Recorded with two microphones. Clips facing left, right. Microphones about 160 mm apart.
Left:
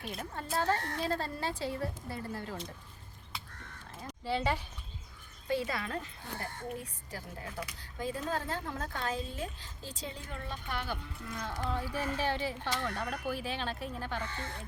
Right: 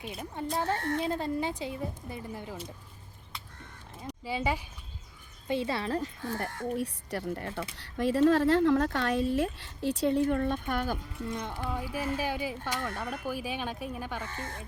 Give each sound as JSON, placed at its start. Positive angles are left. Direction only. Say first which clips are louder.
{"t": 0.0, "sound": "speech", "louder": "right 4 dB", "side_deg": -10}
{"t": 0.8, "sound": "speech", "louder": "right 7 dB", "side_deg": -50}
{"t": 1.1, "sound": "speech", "louder": "right 4 dB", "side_deg": -15}
{"t": 4.0, "sound": "a woman's voice", "louder": "right 1 dB", "side_deg": -10}
{"t": 5.5, "sound": "speech", "louder": "right 4 dB", "side_deg": -25}
{"t": 6.2, "sound": "speech", "louder": "right 7 dB", "side_deg": -90}
{"t": 11.3, "sound": "speech", "louder": "right 4 dB", "side_deg": -25}
{"t": 11.7, "sound": "speech", "louder": "right 3 dB", "side_deg": -10}
{"t": 14.3, "sound": "speech", "louder": "right 2 dB", "side_deg": -45}